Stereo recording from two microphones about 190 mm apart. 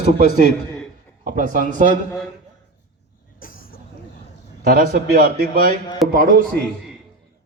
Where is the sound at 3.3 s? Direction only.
50° left (ahead or behind).